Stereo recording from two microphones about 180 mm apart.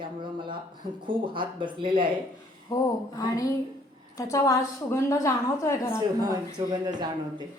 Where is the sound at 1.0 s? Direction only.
30° right (ahead or behind).